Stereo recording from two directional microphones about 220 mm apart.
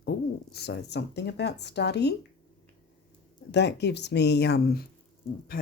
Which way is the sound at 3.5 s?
50° left (ahead or behind).